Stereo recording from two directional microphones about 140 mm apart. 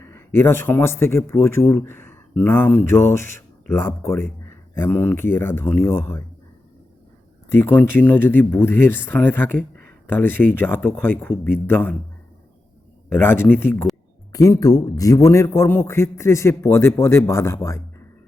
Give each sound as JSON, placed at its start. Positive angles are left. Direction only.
{"t": 0.0, "sound": "a man's voice", "side_deg": 15}
{"t": 7.5, "sound": "speech", "side_deg": 15}
{"t": 13.1, "sound": "a man's voice", "side_deg": 15}